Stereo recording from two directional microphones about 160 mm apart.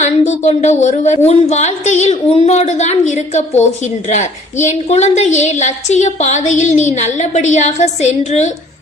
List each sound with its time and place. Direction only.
0.3 s a woman's voice: 45° left (ahead or behind)